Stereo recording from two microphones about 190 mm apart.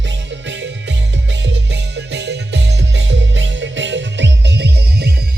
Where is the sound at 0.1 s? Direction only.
75° right (ahead or behind).